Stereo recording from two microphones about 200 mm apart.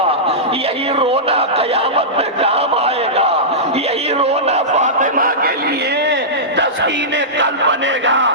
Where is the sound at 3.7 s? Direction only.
30° right (ahead or behind); by 8.3 s 70° right (ahead or behind).